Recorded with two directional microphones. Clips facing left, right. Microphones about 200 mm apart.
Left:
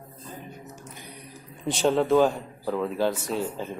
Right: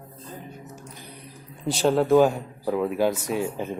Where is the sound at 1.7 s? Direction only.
5° right (ahead or behind).